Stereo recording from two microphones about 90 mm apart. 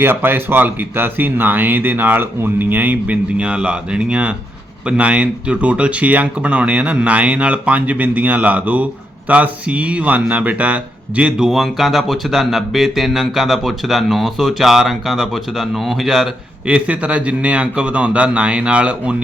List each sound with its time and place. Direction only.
0.0 s speech: 25° right (ahead or behind)
11.4 s speech: centre (ahead or behind)
16.6 s speech: 15° right (ahead or behind)